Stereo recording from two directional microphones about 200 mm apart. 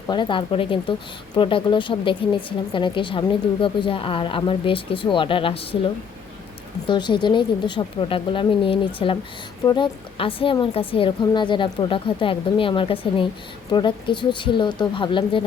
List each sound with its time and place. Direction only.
0.1 s a woman's voice: 25° left (ahead or behind)
6.8 s a woman's voice: 25° left (ahead or behind)